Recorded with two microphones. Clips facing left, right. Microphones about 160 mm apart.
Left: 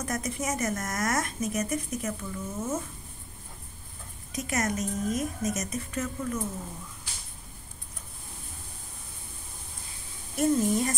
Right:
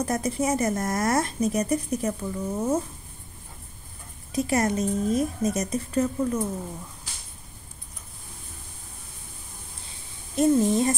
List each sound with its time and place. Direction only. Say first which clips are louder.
0.0 s speech: right 6 dB; 30° right (ahead or behind)
4.3 s speech: right 6 dB; 30° right (ahead or behind)
10.3 s a woman's voice: right 4 dB; 25° right (ahead or behind)